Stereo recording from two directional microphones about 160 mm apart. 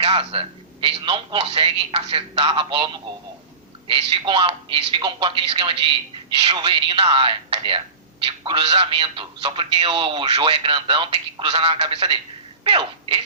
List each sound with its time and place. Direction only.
0.0 s speech: 35° right (ahead or behind)